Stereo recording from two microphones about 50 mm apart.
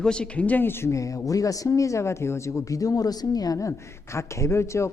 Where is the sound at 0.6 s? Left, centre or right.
Left.